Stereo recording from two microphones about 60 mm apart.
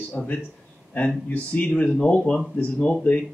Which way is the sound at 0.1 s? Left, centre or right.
Left.